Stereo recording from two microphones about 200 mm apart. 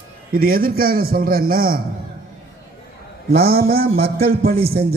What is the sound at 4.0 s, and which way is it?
Speech, 30° right (ahead or behind).